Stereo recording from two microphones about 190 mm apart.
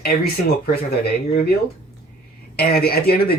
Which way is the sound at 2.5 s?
55° left (ahead or behind).